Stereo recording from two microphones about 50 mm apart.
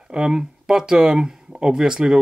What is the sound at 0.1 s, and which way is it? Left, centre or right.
Speech, centre.